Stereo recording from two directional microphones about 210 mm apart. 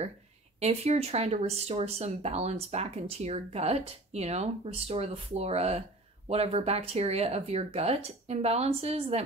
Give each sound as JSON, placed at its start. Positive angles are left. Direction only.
{"t": 0.6, "sound": "speech", "side_deg": -30}